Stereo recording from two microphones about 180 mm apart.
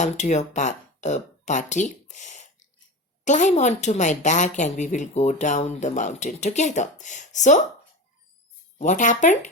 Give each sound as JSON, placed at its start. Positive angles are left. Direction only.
{"t": 0.0, "sound": "a woman's voice", "side_deg": 40}
{"t": 8.8, "sound": "speech", "side_deg": 45}